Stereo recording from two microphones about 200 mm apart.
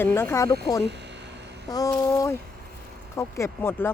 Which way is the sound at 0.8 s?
60° right (ahead or behind).